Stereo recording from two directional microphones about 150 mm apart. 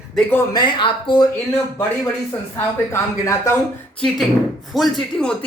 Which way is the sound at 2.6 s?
15° left (ahead or behind).